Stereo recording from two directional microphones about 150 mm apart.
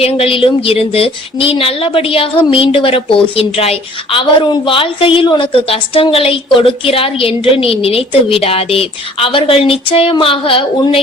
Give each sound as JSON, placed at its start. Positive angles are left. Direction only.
{"t": 0.0, "sound": "speech", "side_deg": 40}